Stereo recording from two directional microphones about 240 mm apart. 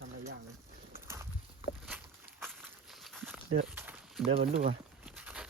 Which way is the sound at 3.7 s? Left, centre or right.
Centre.